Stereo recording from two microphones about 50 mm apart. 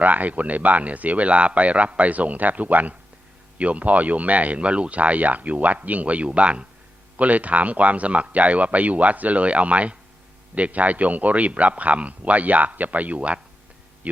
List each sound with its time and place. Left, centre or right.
0.0 s speech: right